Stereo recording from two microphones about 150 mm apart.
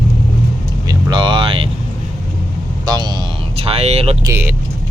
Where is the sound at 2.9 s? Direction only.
25° right (ahead or behind).